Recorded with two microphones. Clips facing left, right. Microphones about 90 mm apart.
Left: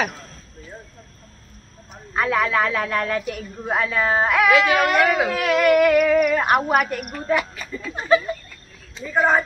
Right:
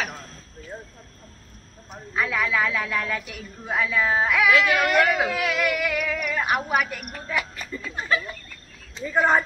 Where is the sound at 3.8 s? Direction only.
50° left (ahead or behind).